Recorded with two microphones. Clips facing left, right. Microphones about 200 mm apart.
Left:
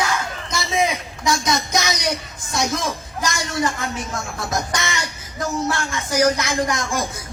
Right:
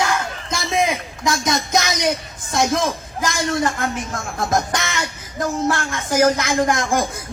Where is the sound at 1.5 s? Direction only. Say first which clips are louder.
Right 2 dB; 55° right (ahead or behind).